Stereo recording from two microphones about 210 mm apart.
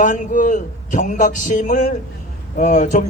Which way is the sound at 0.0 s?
35° left (ahead or behind).